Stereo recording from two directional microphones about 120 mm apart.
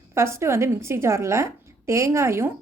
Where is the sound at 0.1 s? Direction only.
20° right (ahead or behind).